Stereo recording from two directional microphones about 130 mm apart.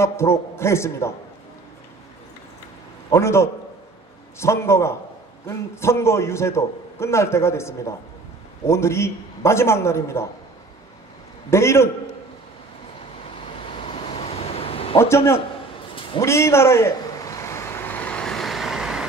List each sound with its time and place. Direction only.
0.0 s a man's voice: 20° left (ahead or behind)
3.1 s a man's voice: 20° left (ahead or behind)
11.5 s a man's voice: 20° left (ahead or behind)
13.8 s dog: 50° left (ahead or behind)
15.0 s a man's voice: 20° left (ahead or behind)
16.2 s vehicle: 20° left (ahead or behind); by 19.0 s 5° right (ahead or behind)